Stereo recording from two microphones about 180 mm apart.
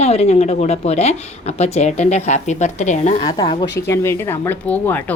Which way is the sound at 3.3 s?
25° left (ahead or behind).